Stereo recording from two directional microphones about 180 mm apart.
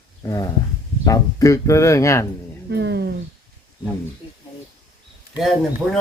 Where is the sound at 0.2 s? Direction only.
20° left (ahead or behind).